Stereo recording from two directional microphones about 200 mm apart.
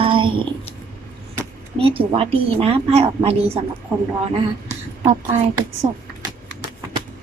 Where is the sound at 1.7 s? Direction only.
30° right (ahead or behind).